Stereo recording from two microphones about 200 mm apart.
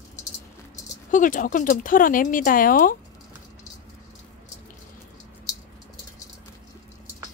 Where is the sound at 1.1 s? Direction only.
40° left (ahead or behind).